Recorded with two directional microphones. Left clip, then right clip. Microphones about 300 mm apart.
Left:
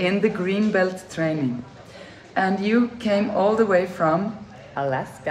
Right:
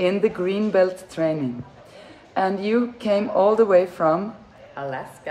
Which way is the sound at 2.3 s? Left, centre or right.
Centre.